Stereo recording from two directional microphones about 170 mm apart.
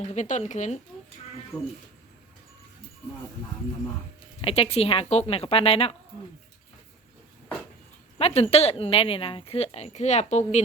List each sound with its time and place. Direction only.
0.0 s speech: 45° left (ahead or behind)
1.5 s speech: 5° left (ahead or behind)
4.4 s speech: 35° left (ahead or behind)
8.2 s speech: 40° left (ahead or behind)